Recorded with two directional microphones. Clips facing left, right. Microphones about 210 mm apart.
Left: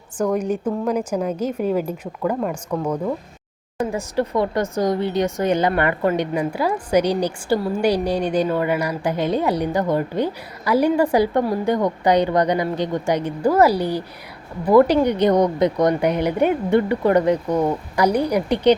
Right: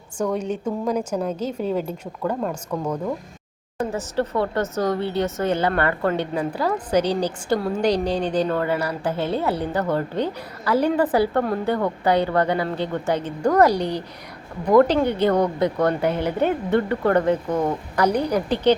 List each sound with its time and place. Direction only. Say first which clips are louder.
0.3 s speech: left 4 dB; 10° left (ahead or behind)